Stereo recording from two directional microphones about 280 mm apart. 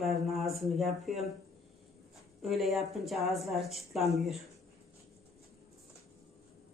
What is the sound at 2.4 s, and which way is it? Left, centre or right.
Speech, centre.